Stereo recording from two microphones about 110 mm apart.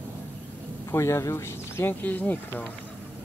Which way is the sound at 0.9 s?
25° left (ahead or behind).